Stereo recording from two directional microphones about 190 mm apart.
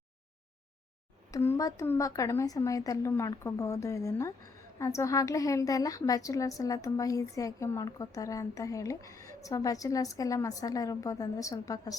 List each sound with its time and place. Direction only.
1.3 s a woman's voice: 15° left (ahead or behind)